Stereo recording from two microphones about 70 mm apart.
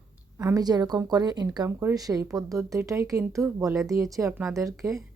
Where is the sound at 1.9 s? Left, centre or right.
Right.